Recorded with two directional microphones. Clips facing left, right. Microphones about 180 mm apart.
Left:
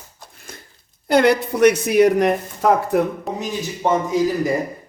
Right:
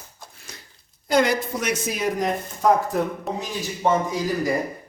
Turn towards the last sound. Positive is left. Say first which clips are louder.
# left 5 dB
turn(degrees=20)  # may be behind; listen again after turning